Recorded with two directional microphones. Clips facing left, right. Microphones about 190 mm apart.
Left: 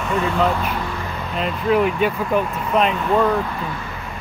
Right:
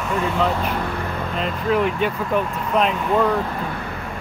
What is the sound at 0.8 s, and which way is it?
Vehicle, 60° right (ahead or behind).